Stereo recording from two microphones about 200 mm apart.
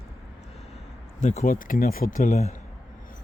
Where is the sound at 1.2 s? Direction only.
35° left (ahead or behind).